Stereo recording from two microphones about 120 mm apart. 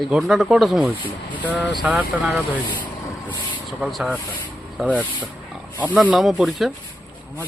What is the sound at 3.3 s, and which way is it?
Vehicle, 40° left (ahead or behind).